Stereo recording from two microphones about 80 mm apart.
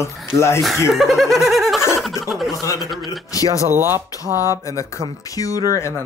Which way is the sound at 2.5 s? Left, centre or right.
Left.